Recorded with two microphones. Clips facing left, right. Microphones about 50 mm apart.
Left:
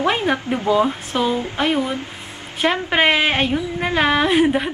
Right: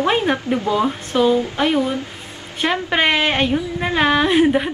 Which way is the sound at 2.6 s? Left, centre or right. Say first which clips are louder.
Left 1 dB; centre.